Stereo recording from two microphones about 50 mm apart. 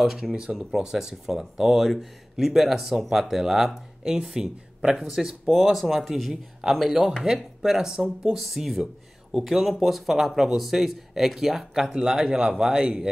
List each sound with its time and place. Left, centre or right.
0.0 s speech: centre